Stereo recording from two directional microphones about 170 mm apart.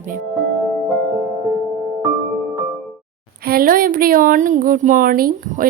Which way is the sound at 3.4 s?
60° right (ahead or behind).